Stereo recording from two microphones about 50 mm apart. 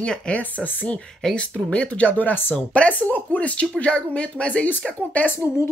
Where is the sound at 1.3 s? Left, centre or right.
Left.